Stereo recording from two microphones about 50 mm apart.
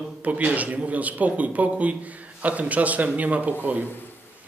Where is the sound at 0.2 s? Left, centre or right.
Right.